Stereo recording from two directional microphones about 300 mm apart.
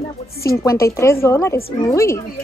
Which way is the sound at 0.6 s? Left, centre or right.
Centre.